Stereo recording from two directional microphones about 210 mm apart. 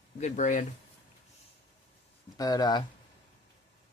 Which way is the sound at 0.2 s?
35° left (ahead or behind).